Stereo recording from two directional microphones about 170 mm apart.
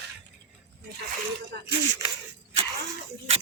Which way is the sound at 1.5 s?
70° right (ahead or behind).